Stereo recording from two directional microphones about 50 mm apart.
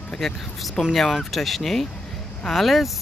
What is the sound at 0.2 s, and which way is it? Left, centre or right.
Speech, centre.